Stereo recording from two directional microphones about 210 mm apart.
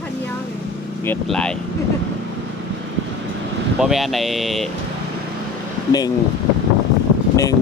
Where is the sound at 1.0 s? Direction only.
5° left (ahead or behind).